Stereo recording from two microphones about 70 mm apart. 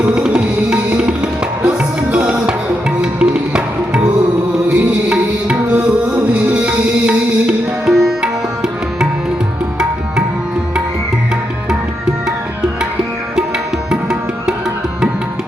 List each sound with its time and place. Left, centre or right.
0.2 s music: centre
7.9 s music: centre
13.9 s music: centre